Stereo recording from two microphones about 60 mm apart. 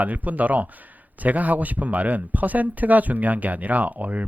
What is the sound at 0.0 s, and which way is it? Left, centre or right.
Speech, right.